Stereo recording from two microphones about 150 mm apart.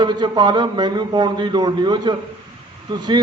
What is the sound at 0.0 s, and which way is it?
Mantra, 30° right (ahead or behind).